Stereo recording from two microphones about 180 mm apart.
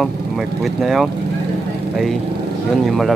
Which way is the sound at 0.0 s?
Centre (ahead or behind).